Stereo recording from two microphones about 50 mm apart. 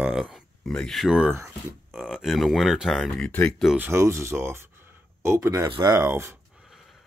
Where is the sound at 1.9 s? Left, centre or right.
Centre.